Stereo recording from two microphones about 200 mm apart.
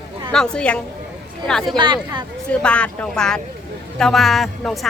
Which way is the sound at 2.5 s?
5° left (ahead or behind).